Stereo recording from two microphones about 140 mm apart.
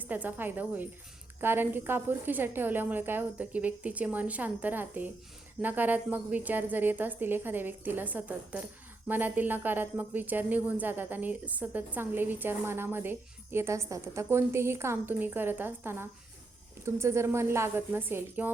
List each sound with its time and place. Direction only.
0.0 s speech: 10° right (ahead or behind)